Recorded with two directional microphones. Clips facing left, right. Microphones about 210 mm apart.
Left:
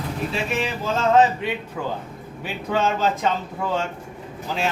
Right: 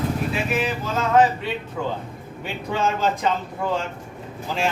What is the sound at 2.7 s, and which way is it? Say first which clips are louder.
Speech: left 1 dB; centre (ahead or behind).